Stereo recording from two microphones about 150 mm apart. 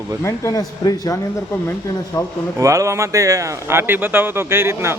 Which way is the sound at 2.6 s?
20° right (ahead or behind).